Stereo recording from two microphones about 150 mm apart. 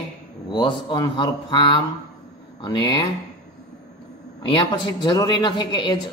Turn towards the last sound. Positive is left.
turn(degrees=30)  # may be behind; listen again after turning